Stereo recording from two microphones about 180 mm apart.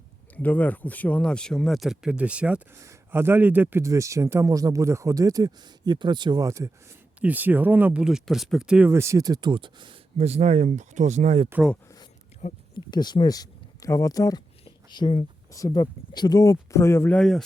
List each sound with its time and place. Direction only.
0.3 s speech: 10° left (ahead or behind); by 11.4 s 40° right (ahead or behind)
12.4 s speech: 40° left (ahead or behind)
12.9 s speech: 25° left (ahead or behind); by 17.4 s 5° left (ahead or behind)